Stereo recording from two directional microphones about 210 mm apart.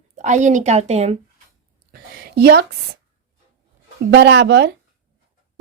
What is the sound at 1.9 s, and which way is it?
Speech, 50° right (ahead or behind).